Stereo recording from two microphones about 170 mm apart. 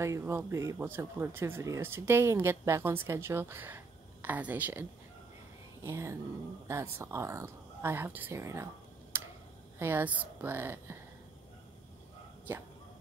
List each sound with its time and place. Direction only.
0.0 s speech: 15° right (ahead or behind)
5.9 s speech: 15° right (ahead or behind)
9.1 s tick-tock: 15° right (ahead or behind)
9.8 s speech: 10° right (ahead or behind)
12.5 s speech: 15° right (ahead or behind)